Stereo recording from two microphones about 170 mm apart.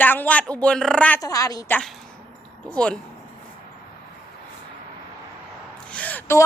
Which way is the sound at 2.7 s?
5° left (ahead or behind).